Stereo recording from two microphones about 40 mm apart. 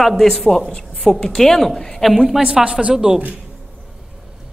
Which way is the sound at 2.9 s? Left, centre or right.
Centre.